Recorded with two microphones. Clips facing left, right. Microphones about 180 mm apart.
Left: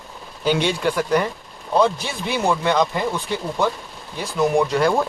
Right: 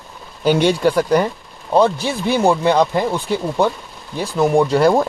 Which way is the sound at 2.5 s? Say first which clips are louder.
Right 4 dB; 35° right (ahead or behind).